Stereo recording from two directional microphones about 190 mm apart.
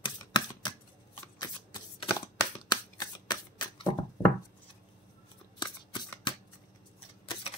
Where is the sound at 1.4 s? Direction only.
20° left (ahead or behind).